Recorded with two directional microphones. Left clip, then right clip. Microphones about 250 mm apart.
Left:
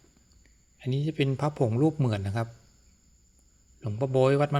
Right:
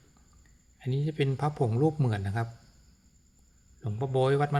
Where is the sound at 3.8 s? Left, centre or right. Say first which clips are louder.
Left 4 dB; centre.